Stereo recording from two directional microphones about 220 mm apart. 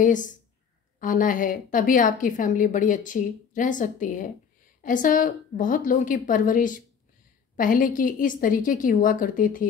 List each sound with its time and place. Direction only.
0.0 s a woman's voice: 35° left (ahead or behind)